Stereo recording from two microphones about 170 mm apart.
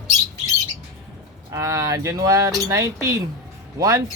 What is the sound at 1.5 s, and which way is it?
Speech, 20° right (ahead or behind).